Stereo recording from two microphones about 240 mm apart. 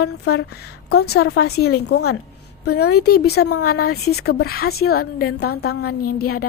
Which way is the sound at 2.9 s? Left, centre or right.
Left.